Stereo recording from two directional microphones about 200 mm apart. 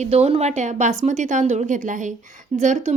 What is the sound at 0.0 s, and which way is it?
A woman's voice, 30° right (ahead or behind).